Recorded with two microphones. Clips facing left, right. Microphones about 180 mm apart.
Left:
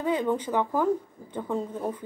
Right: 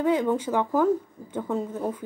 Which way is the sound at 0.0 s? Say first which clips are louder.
Right 3 dB; 10° right (ahead or behind).